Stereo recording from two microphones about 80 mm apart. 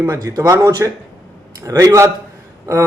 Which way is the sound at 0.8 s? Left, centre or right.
Right.